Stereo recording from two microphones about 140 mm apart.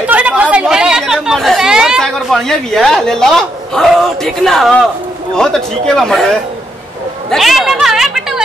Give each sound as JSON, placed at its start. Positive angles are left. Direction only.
{"t": 0.0, "sound": "chatter", "side_deg": -10}
{"t": 5.3, "sound": "speech", "side_deg": 5}
{"t": 7.2, "sound": "a sound", "side_deg": 0}